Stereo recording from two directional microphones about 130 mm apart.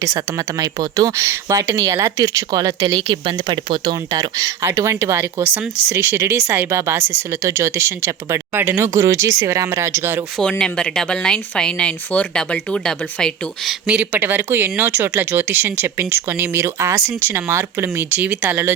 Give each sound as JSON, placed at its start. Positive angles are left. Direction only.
{"t": 0.0, "sound": "speech", "side_deg": -25}
{"t": 3.0, "sound": "speech", "side_deg": -40}
{"t": 10.6, "sound": "speech", "side_deg": 5}
{"t": 13.8, "sound": "speech", "side_deg": -10}